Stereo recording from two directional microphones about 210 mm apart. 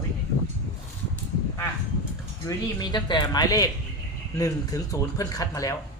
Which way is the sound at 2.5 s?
20° left (ahead or behind).